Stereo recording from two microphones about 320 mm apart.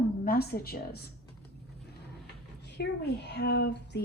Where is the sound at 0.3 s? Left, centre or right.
Left.